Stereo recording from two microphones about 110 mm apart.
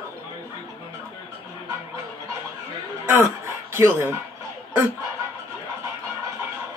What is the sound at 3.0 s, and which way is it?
Music, 20° right (ahead or behind).